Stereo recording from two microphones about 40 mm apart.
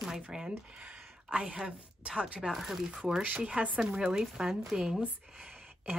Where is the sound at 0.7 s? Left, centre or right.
Right.